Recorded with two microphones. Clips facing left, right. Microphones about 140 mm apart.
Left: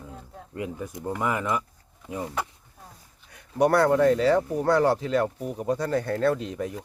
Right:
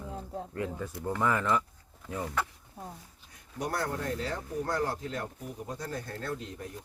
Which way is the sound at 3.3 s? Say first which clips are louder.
Left 14 dB; 70° left (ahead or behind).